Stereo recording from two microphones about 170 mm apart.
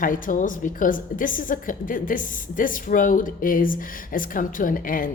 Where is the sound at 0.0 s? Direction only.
50° left (ahead or behind).